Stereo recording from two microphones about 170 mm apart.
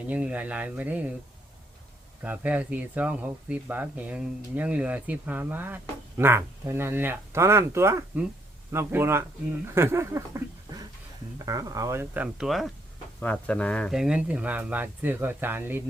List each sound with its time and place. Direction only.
0.1 s speech: 10° right (ahead or behind)
2.2 s speech: 10° right (ahead or behind)
9.7 s a sound: 15° right (ahead or behind)
11.3 s speech: 20° right (ahead or behind)